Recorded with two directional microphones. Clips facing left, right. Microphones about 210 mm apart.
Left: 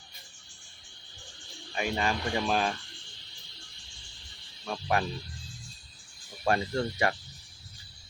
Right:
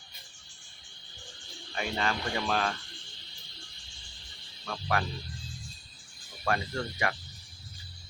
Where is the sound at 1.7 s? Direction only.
15° left (ahead or behind).